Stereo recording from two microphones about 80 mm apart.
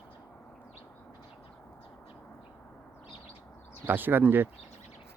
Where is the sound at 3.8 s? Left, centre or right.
Right.